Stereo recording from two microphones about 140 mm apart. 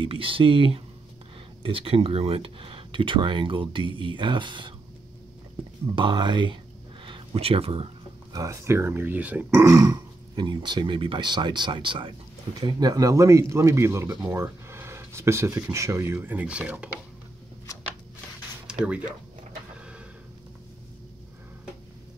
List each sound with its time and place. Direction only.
0.0 s speech: 40° right (ahead or behind)
5.9 s speech: 35° right (ahead or behind)
8.3 s speech: 25° right (ahead or behind)
18.7 s speech: 10° right (ahead or behind)